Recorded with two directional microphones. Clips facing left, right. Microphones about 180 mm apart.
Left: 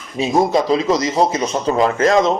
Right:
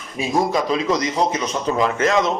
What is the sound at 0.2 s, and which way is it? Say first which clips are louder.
A man's voice: left 4 dB; 25° left (ahead or behind).